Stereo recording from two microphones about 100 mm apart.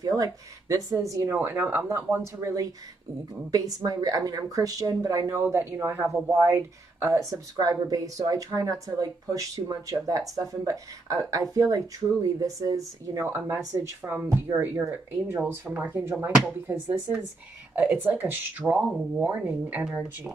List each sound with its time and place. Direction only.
0.0 s speech: 35° right (ahead or behind)
2.4 s speech: 35° right (ahead or behind)
13.2 s speech: 20° right (ahead or behind)
18.8 s speech: centre (ahead or behind)
19.1 s speech: 15° right (ahead or behind)